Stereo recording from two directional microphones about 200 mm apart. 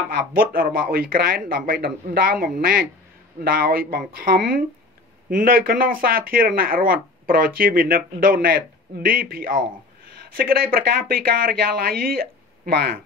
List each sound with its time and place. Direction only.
0.3 s speech: 45° right (ahead or behind)